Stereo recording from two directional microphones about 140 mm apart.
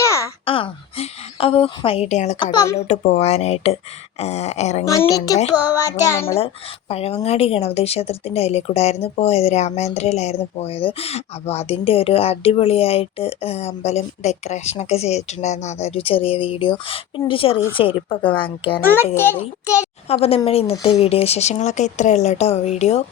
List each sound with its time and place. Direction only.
0.0 s a sound: 20° left (ahead or behind)
0.4 s a sound: 40° left (ahead or behind)
2.4 s speech: 30° left (ahead or behind)
2.7 s speech: 55° left (ahead or behind)
4.9 s speech: 25° left (ahead or behind)
5.5 s child singing: 15° right (ahead or behind)
6.1 s speech: 20° left (ahead or behind)
6.4 s speech: 45° left (ahead or behind)
19.1 s a child's voice: 15° left (ahead or behind)
20.1 s speech: 45° left (ahead or behind)